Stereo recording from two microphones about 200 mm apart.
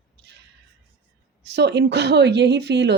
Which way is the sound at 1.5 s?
60° right (ahead or behind).